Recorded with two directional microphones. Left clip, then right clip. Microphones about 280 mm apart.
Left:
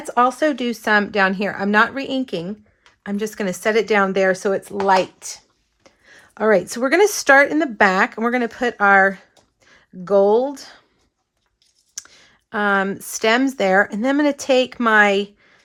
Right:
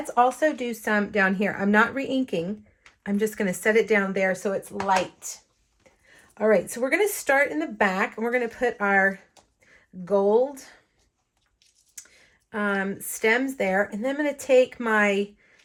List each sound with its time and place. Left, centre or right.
0.1 s speech: left
11.9 s speech: centre